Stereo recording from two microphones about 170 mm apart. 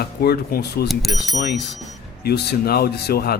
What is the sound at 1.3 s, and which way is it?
Speech, 75° left (ahead or behind).